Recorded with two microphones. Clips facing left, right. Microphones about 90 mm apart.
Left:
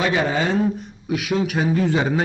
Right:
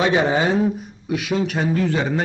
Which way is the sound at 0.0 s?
20° right (ahead or behind).